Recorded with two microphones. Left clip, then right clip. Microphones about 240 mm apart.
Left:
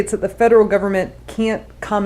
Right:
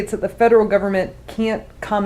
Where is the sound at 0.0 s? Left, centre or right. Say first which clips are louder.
Left 1 dB; left.